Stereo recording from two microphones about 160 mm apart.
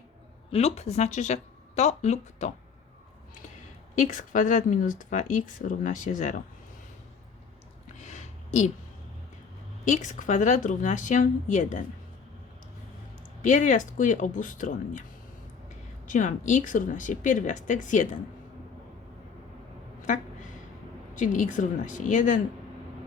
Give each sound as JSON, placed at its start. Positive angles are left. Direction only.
{"t": 0.5, "sound": "speech", "side_deg": 40}
{"t": 3.9, "sound": "speech", "side_deg": 50}
{"t": 7.9, "sound": "a sound", "side_deg": 50}
{"t": 9.8, "sound": "speech", "side_deg": 50}
{"t": 13.4, "sound": "speech", "side_deg": 50}
{"t": 16.0, "sound": "speech", "side_deg": 50}
{"t": 20.0, "sound": "a sound", "side_deg": 50}
{"t": 21.2, "sound": "speech", "side_deg": 50}